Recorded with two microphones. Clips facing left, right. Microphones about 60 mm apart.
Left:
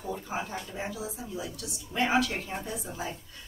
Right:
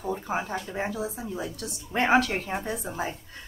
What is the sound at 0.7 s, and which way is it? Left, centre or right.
Speech, right.